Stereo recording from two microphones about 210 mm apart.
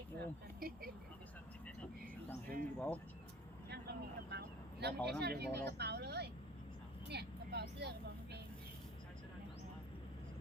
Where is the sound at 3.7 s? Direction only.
50° right (ahead or behind).